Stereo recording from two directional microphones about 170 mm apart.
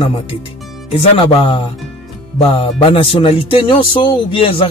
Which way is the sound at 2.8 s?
30° left (ahead or behind).